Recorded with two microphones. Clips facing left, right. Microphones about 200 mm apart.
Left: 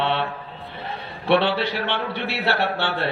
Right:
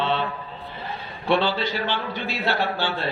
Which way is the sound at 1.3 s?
65° left (ahead or behind).